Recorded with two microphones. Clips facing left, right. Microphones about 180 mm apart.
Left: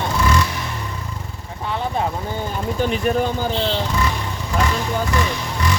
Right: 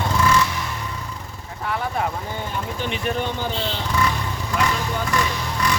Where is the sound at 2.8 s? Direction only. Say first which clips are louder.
Left 6 dB; 40° left (ahead or behind).